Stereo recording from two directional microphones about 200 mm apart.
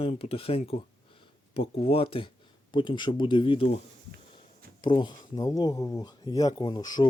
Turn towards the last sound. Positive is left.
turn(degrees=20)  # may be behind; listen again after turning